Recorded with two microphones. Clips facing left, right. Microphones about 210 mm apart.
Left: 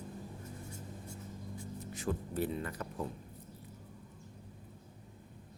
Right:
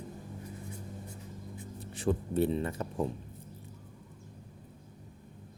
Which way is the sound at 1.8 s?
30° right (ahead or behind).